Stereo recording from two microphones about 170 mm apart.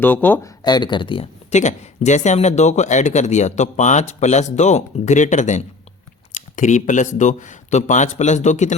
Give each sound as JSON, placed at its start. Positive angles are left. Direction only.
{"t": 0.0, "sound": "speech", "side_deg": 10}
{"t": 0.6, "sound": "speech", "side_deg": 25}